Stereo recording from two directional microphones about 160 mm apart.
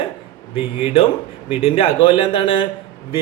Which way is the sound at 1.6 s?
35° left (ahead or behind).